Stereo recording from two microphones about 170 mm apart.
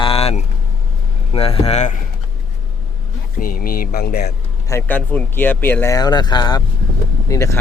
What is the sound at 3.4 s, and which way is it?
Speech, 60° left (ahead or behind).